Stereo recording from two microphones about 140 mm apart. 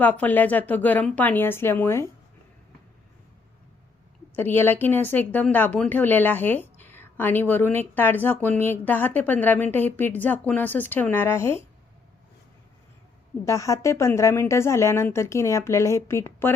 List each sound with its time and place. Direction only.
0.0 s a woman's voice: 10° left (ahead or behind)
4.4 s a woman's voice: 15° left (ahead or behind)
13.4 s a woman's voice: 20° left (ahead or behind)